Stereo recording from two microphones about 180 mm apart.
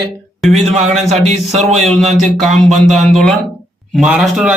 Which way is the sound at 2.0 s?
Centre (ahead or behind).